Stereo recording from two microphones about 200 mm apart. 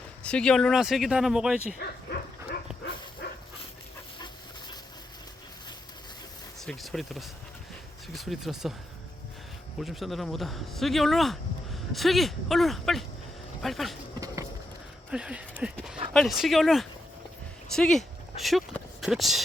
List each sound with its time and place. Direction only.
0.2 s speech: 5° left (ahead or behind)
1.8 s bow-wow: 50° left (ahead or behind)
6.7 s speech: centre (ahead or behind)
9.8 s speech: centre (ahead or behind)
15.1 s speech: 5° right (ahead or behind)
19.0 s speech: centre (ahead or behind)